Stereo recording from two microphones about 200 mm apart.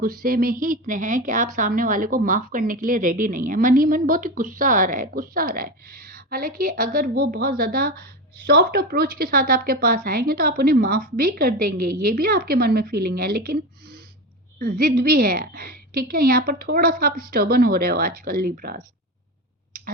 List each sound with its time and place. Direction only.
0.0 s a woman's voice: 45° right (ahead or behind)